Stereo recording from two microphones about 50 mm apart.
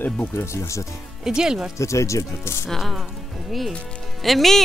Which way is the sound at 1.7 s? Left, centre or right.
Left.